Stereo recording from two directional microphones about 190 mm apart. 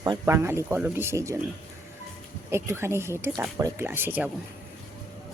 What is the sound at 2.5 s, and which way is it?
Speech, 15° right (ahead or behind).